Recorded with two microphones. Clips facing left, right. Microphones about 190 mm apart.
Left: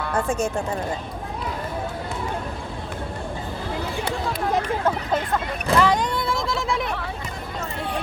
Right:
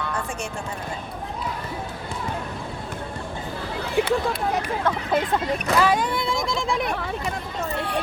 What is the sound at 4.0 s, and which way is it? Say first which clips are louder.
Chatter: right 11 dB; 60° right (ahead or behind).